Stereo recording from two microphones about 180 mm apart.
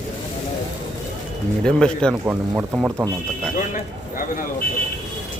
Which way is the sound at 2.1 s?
5° right (ahead or behind).